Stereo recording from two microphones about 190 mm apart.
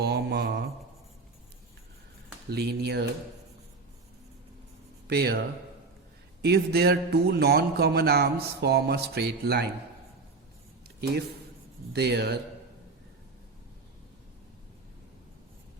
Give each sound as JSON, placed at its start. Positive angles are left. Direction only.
{"t": 0.0, "sound": "mantra", "side_deg": -60}
{"t": 2.5, "sound": "speech", "side_deg": -60}
{"t": 5.0, "sound": "speech", "side_deg": -55}
{"t": 6.4, "sound": "speech", "side_deg": -55}
{"t": 11.9, "sound": "speech", "side_deg": -60}